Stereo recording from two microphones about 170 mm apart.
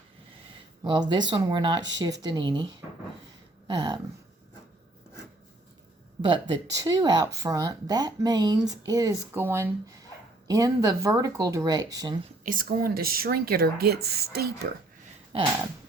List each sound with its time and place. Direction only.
0.9 s speech: 25° right (ahead or behind)
3.7 s speech: 25° right (ahead or behind)
6.2 s speech: 25° right (ahead or behind)
12.5 s speech: 55° right (ahead or behind)